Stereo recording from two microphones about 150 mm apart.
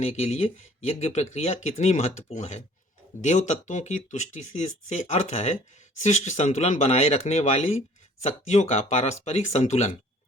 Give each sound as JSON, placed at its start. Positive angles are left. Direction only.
{"t": 0.0, "sound": "speech", "side_deg": 45}